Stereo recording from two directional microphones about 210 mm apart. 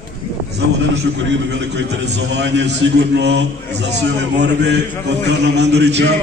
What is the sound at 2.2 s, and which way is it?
A man's voice, 55° right (ahead or behind).